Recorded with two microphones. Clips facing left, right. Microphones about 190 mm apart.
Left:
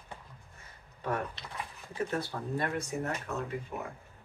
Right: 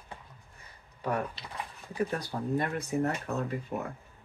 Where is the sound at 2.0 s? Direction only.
15° right (ahead or behind).